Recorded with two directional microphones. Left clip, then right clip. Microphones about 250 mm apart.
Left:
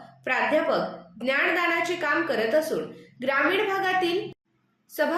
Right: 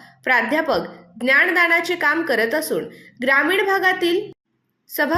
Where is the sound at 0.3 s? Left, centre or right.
Right.